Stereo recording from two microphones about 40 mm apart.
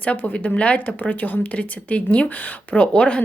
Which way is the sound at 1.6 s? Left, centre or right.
Left.